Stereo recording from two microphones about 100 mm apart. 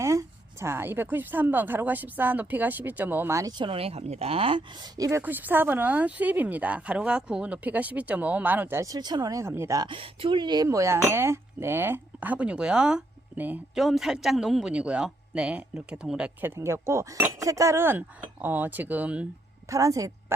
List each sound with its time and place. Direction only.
0.0 s speech: 30° right (ahead or behind)
3.6 s speech: 70° right (ahead or behind)
4.8 s speech: 35° right (ahead or behind)
5.2 s speech: 20° right (ahead or behind)
8.8 s speech: 40° right (ahead or behind)
9.7 s speech: 55° right (ahead or behind); by 13.6 s 15° right (ahead or behind)
13.7 s a man's voice: centre (ahead or behind)
16.4 s speech: 25° right (ahead or behind)
19.7 s speech: 35° right (ahead or behind)